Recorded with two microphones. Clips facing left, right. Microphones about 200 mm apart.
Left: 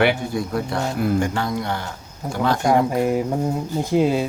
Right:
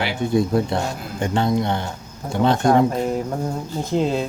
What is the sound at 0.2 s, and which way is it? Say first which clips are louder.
Speech: right 5 dB; 25° right (ahead or behind).